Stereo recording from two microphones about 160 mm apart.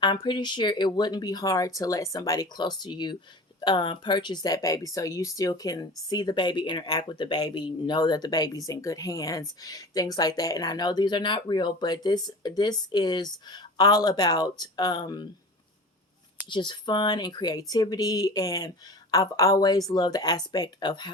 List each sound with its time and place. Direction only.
0.0 s speech: 30° left (ahead or behind)
16.5 s speech: 30° left (ahead or behind)